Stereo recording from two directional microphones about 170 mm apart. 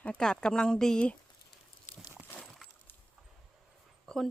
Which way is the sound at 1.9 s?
45° left (ahead or behind).